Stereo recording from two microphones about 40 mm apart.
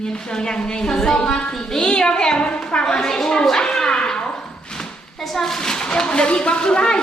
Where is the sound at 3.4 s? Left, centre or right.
Centre.